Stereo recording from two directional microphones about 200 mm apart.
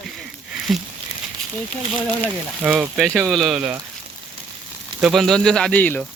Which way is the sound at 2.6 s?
5° right (ahead or behind).